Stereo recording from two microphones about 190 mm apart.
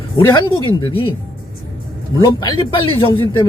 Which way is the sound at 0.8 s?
25° left (ahead or behind).